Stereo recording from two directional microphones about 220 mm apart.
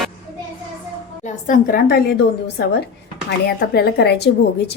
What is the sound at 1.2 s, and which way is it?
A woman's voice, 35° left (ahead or behind).